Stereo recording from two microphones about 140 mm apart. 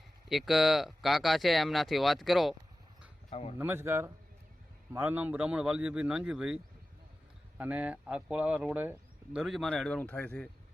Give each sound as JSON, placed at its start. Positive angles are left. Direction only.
{"t": 0.3, "sound": "speech", "side_deg": 0}
{"t": 3.2, "sound": "speech", "side_deg": 45}
{"t": 3.6, "sound": "speech", "side_deg": -15}
{"t": 7.6, "sound": "speech", "side_deg": -10}
{"t": 9.4, "sound": "speech", "side_deg": 0}